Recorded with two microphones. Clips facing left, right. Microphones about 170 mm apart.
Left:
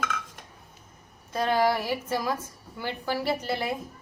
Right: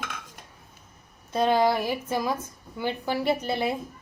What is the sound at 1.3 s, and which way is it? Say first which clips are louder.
Speech: right 2 dB; 20° right (ahead or behind).